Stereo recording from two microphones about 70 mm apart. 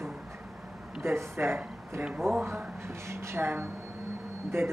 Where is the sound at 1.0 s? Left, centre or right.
Right.